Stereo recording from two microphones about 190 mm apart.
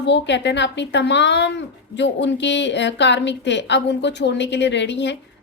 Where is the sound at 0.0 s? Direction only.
65° left (ahead or behind).